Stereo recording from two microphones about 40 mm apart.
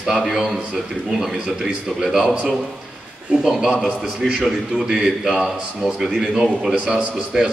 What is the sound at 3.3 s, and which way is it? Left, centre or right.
A man's voice, centre.